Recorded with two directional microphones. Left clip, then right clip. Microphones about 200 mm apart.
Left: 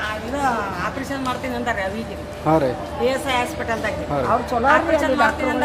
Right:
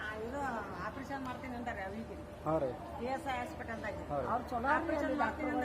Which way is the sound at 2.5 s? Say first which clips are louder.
Left 17 dB; 25° left (ahead or behind).